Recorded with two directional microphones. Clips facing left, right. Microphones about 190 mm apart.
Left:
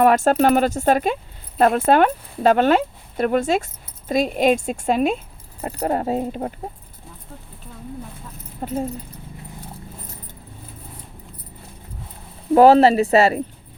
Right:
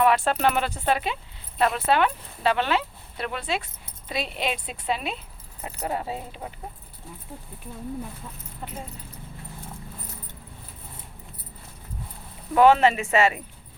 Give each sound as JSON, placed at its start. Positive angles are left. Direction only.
{"t": 0.0, "sound": "speech", "side_deg": 45}
{"t": 8.6, "sound": "speech", "side_deg": 45}
{"t": 12.5, "sound": "speech", "side_deg": 35}